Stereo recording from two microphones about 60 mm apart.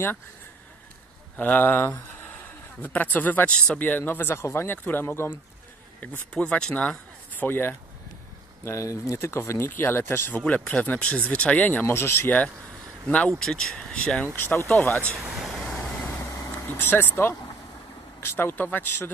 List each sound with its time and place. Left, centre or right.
1.3 s speech: left
6.3 s speech: left
7.3 s speech: left
8.6 s speech: left
10.3 s speech: centre
11.8 s speech: left
13.3 s speech: centre
14.2 s speech: left
15.3 s vehicle: centre
16.3 s vehicle: left
16.6 s speech: left